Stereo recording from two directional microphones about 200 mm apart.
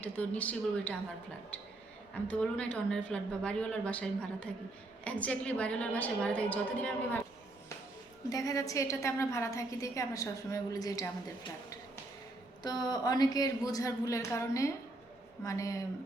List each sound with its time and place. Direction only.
0.0 s a woman's voice: 5° left (ahead or behind)
2.2 s a woman's voice: 5° left (ahead or behind)
8.3 s a woman's voice: 15° left (ahead or behind)
12.6 s a woman's voice: 20° left (ahead or behind)